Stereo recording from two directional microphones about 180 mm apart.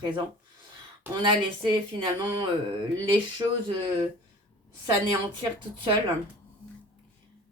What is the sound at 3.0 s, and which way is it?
Speech, 25° right (ahead or behind).